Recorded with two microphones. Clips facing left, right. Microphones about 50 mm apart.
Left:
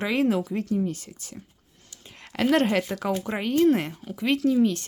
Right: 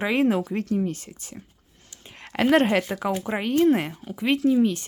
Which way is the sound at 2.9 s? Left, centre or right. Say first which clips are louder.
Right 1 dB; centre.